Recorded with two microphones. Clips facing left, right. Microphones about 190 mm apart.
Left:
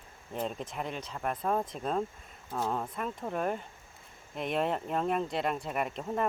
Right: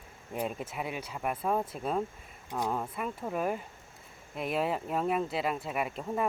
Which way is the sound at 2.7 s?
5° right (ahead or behind).